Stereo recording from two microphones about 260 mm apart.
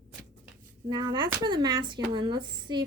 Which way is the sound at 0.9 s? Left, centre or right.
Centre.